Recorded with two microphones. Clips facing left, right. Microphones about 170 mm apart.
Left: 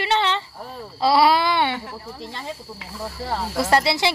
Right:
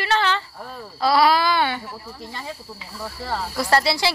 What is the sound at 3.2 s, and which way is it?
Speech, 25° left (ahead or behind).